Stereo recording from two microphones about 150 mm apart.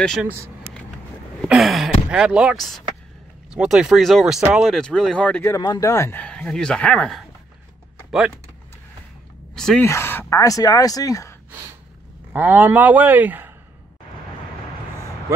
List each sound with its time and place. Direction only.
1.5 s speech: centre (ahead or behind)
5.6 s speech: 25° left (ahead or behind); by 7.2 s 5° left (ahead or behind)
9.6 s a sound: 5° left (ahead or behind)
9.8 s speech: 15° left (ahead or behind)
12.3 s speech: 10° right (ahead or behind)